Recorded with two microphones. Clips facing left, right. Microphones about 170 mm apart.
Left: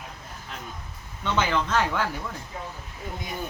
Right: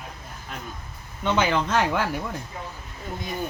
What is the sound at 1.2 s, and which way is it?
Speech, 15° right (ahead or behind).